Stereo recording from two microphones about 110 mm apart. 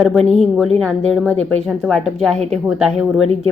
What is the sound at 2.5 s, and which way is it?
Speech, centre (ahead or behind).